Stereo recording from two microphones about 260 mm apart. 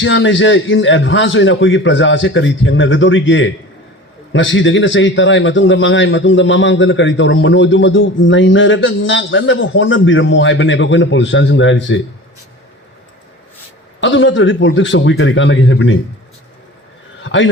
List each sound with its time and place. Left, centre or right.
0.0 s a man's voice: left
14.0 s a man's voice: left
17.2 s a man's voice: left